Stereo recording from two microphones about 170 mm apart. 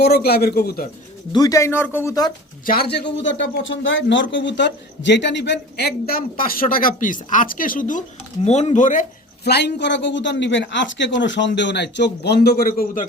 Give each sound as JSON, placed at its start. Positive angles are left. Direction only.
{"t": 0.0, "sound": "a man's voice", "side_deg": 70}
{"t": 1.3, "sound": "speech", "side_deg": 20}
{"t": 2.6, "sound": "a man's voice", "side_deg": 70}
{"t": 9.4, "sound": "speech", "side_deg": 80}